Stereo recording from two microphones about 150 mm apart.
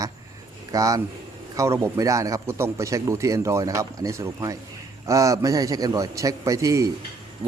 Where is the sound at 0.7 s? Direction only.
25° right (ahead or behind).